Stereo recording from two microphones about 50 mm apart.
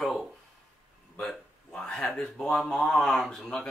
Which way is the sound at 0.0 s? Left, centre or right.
Centre.